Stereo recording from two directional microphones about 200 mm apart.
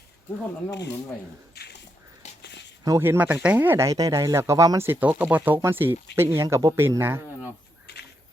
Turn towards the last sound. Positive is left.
turn(degrees=-10)  # may be behind; listen again after turning